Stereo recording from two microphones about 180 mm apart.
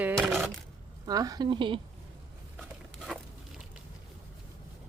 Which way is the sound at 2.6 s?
Centre (ahead or behind).